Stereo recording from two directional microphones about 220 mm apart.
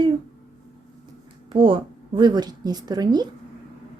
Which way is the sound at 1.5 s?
25° right (ahead or behind).